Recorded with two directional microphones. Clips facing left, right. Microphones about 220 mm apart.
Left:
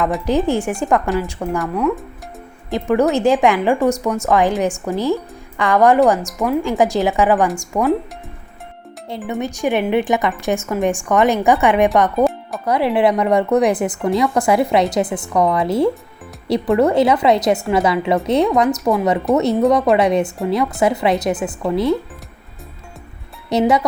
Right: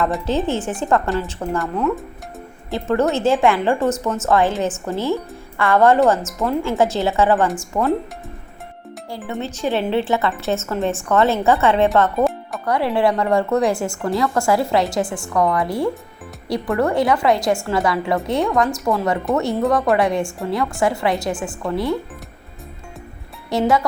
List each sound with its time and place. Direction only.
0.3 s speech: 15° left (ahead or behind)
1.4 s speech: centre (ahead or behind)
2.9 s speech: 15° left (ahead or behind)
7.7 s speech: centre (ahead or behind)
9.0 s speech: 20° left (ahead or behind)
12.1 s music: centre (ahead or behind)
12.6 s a woman's voice: 20° left (ahead or behind)
23.5 s a woman's voice: 20° left (ahead or behind)